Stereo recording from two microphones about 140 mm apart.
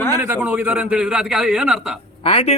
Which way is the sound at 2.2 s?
45° left (ahead or behind).